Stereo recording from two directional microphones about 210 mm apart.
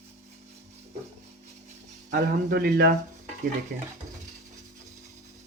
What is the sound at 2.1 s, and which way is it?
Speech, 45° right (ahead or behind).